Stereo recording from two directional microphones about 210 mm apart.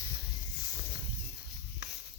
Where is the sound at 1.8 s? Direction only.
55° left (ahead or behind).